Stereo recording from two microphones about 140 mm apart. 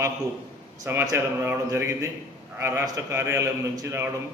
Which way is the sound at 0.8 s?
20° right (ahead or behind).